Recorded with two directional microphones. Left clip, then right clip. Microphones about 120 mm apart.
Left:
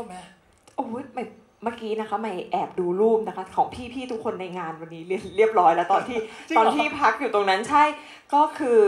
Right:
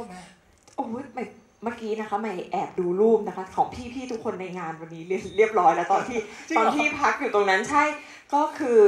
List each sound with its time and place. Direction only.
0.7 s a woman's voice: 40° left (ahead or behind)